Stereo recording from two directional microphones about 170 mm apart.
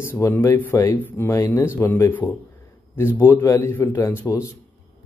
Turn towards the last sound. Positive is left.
turn(degrees=15)  # may be behind; listen again after turning